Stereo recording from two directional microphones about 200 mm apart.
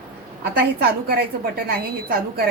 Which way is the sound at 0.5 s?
50° right (ahead or behind).